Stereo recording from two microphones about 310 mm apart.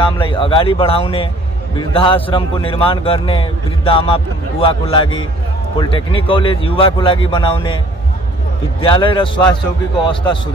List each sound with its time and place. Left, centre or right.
0.0 s a man's voice: centre
8.8 s a man's voice: centre